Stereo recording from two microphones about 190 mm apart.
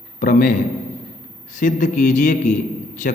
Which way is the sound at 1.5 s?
40° left (ahead or behind).